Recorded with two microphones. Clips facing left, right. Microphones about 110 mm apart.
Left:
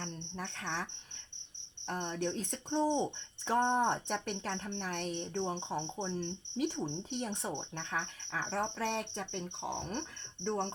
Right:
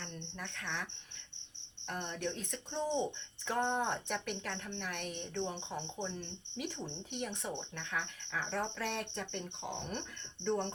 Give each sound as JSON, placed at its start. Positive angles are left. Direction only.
{"t": 0.0, "sound": "cricket", "side_deg": 35}
{"t": 1.9, "sound": "speech", "side_deg": 35}
{"t": 7.2, "sound": "speech", "side_deg": 35}